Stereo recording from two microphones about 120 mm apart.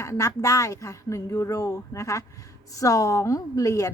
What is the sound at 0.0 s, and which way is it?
A woman's voice, 25° left (ahead or behind).